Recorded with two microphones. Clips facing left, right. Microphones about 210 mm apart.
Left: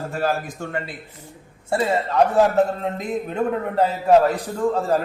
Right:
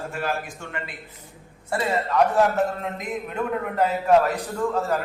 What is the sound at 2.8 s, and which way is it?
A man's voice, 30° left (ahead or behind).